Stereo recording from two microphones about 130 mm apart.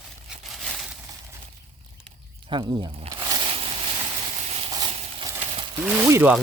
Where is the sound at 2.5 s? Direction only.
40° right (ahead or behind).